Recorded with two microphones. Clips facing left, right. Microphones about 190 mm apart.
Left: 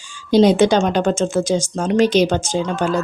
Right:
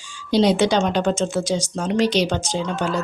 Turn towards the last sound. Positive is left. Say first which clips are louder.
# left 4 dB
turn(degrees=50)  # may be behind; listen again after turning